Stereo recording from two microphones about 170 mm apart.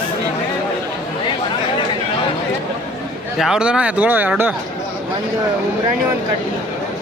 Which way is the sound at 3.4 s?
5° right (ahead or behind).